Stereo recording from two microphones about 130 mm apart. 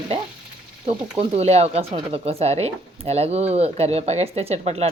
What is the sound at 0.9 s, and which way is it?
Speech, 55° right (ahead or behind).